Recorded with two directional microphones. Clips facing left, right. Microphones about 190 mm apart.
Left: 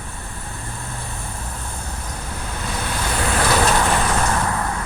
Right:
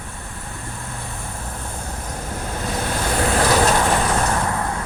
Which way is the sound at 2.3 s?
45° right (ahead or behind).